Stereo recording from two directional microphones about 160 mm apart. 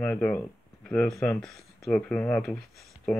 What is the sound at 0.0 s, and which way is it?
Speech, 10° left (ahead or behind).